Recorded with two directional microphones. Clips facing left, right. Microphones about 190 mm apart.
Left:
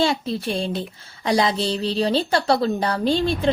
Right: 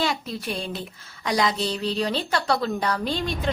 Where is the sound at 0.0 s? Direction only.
30° left (ahead or behind).